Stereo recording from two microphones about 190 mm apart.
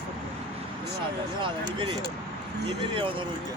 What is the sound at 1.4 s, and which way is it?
Speech, 25° right (ahead or behind).